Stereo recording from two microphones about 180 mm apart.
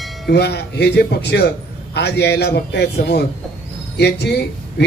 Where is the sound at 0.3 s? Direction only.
65° left (ahead or behind).